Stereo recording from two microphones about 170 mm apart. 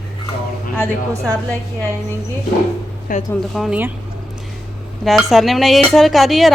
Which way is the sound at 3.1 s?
50° left (ahead or behind).